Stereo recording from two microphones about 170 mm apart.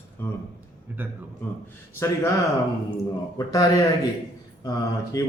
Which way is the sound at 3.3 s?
20° left (ahead or behind).